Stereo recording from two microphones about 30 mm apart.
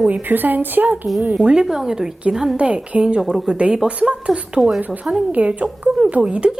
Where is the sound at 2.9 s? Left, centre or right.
Right.